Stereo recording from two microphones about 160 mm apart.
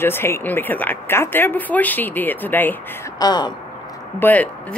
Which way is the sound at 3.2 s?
25° left (ahead or behind).